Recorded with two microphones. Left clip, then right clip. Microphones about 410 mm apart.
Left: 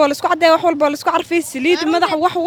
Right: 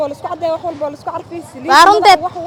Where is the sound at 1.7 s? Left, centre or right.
Right.